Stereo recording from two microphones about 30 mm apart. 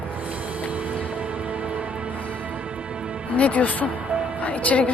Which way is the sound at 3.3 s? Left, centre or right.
Left.